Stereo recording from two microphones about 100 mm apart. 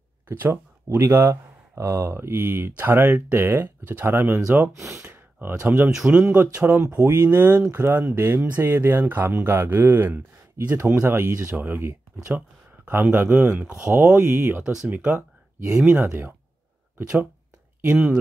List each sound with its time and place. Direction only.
0.3 s speech: 25° right (ahead or behind)
5.0 s speech: 15° right (ahead or behind)
14.1 s speech: 25° right (ahead or behind)
14.6 s speech: 10° right (ahead or behind)
15.0 s speech: 25° right (ahead or behind)